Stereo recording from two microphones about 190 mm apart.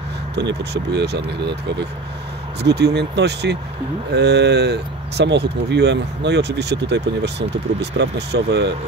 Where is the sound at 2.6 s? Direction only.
60° right (ahead or behind).